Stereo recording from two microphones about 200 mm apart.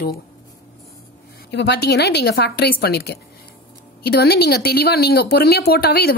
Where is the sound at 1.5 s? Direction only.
55° left (ahead or behind).